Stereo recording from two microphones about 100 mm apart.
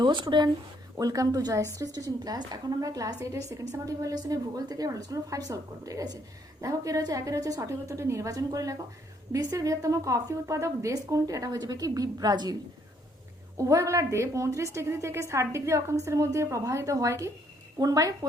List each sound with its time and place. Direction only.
0.0 s speech: 50° right (ahead or behind)
0.9 s a woman's voice: 35° right (ahead or behind)
13.6 s a woman's voice: 35° right (ahead or behind)